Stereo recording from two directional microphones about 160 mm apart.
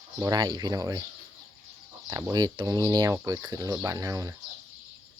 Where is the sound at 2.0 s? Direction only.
20° right (ahead or behind).